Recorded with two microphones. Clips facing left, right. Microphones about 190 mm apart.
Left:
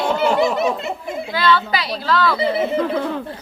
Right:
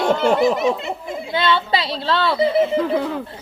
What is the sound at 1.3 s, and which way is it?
Speech, 25° right (ahead or behind).